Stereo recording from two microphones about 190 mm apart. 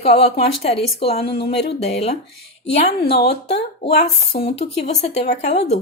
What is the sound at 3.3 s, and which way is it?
Speech, 60° left (ahead or behind).